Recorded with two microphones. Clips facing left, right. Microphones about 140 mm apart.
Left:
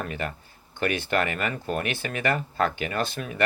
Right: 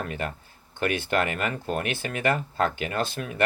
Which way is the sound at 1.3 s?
50° right (ahead or behind).